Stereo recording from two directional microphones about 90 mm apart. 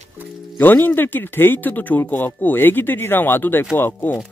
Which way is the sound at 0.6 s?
20° left (ahead or behind).